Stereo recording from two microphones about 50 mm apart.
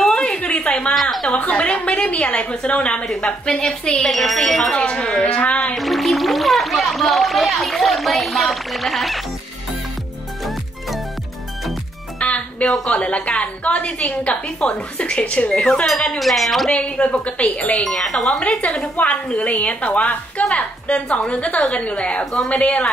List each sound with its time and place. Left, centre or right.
0.1 s a sound: centre
1.3 s a woman's voice: left
4.0 s speech: centre
4.7 s a woman's voice: centre
5.8 s speech: centre
12.2 s a woman's voice: left
15.6 s wind chime: centre
16.2 s speech: centre
16.7 s a woman's voice: left
17.9 s wind chime: centre
18.9 s a woman's voice: left
22.2 s wind chime: centre
22.5 s a woman's voice: left